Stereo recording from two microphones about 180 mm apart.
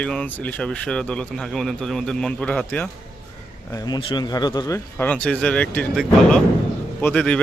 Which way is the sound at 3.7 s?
20° left (ahead or behind).